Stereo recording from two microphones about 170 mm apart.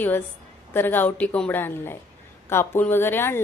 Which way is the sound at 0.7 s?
10° left (ahead or behind).